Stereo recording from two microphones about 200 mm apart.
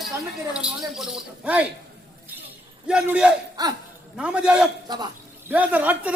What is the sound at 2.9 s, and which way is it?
Speech, 5° right (ahead or behind).